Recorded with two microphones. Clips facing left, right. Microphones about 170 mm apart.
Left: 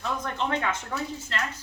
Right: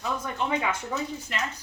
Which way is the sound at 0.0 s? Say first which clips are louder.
Even; 10° right (ahead or behind).